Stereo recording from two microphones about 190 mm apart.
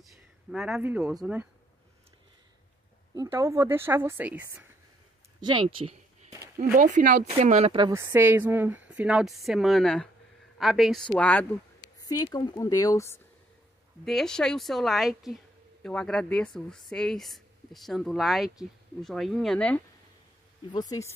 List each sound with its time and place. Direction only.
0.0 s a sound: centre (ahead or behind)
1.2 s a woman's voice: 10° right (ahead or behind)
3.2 s a woman's voice: 15° right (ahead or behind)
5.4 s speech: 25° right (ahead or behind)
6.7 s speech: 45° right (ahead or behind)
7.2 s speech: 35° right (ahead or behind)
7.9 s a woman's voice: 15° right (ahead or behind); by 11.9 s 5° left (ahead or behind)
12.0 s speech: 20° left (ahead or behind)
14.0 s speech: centre (ahead or behind)
20.7 s speech: 20° left (ahead or behind)